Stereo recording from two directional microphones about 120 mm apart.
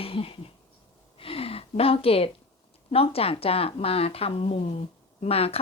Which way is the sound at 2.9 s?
55° left (ahead or behind).